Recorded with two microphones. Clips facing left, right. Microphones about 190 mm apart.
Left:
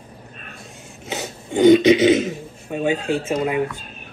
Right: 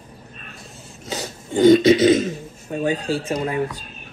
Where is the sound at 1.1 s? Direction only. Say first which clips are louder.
Even; 15° left (ahead or behind).